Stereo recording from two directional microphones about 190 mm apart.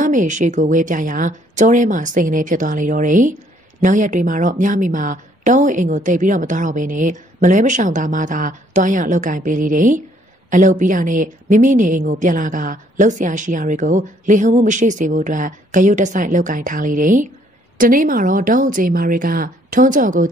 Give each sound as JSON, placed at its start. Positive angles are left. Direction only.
{"t": 0.0, "sound": "a woman's voice", "side_deg": -40}